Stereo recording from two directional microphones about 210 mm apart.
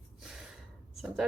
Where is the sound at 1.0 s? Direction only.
Centre (ahead or behind).